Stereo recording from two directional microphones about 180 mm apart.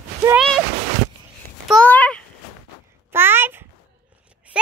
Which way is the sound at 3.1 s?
10° right (ahead or behind).